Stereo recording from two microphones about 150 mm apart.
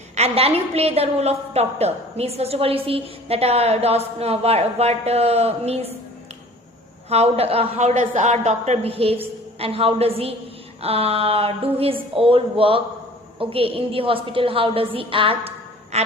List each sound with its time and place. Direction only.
0.2 s a woman's voice: 40° right (ahead or behind)
7.1 s a woman's voice: 40° right (ahead or behind)